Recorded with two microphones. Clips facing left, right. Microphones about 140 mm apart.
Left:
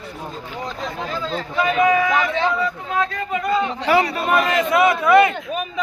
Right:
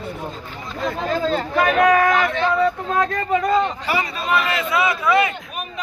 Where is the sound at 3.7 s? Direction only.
80° left.